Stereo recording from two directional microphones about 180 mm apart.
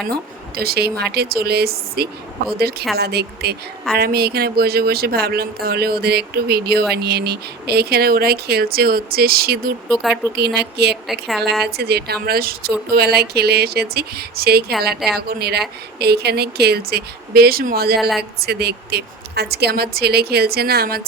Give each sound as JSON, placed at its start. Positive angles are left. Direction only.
{"t": 0.0, "sound": "speech", "side_deg": -60}
{"t": 9.9, "sound": "a woman's voice", "side_deg": 0}
{"t": 10.3, "sound": "speech", "side_deg": -65}
{"t": 11.1, "sound": "a woman's voice", "side_deg": 0}
{"t": 11.6, "sound": "speech", "side_deg": -65}